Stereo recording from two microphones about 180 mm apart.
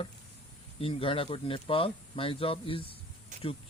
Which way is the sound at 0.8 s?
30° left (ahead or behind).